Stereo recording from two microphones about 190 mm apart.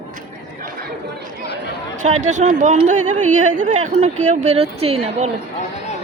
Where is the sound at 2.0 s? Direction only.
40° right (ahead or behind).